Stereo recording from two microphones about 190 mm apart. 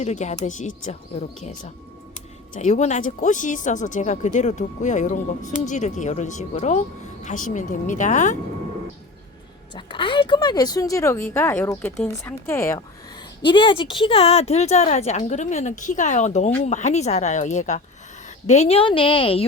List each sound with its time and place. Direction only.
0.0 s speech: 35° left (ahead or behind)
2.6 s speech: 40° left (ahead or behind)
9.7 s a woman's voice: 25° left (ahead or behind)